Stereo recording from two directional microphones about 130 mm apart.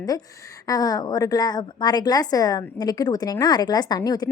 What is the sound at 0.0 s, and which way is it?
A woman's voice, 25° left (ahead or behind).